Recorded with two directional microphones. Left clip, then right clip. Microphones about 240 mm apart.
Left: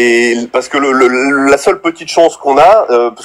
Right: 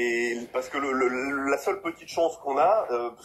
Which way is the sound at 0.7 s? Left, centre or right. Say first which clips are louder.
Left 17 dB; left.